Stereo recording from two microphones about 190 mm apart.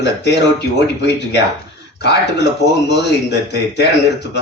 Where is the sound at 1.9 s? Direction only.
60° left (ahead or behind).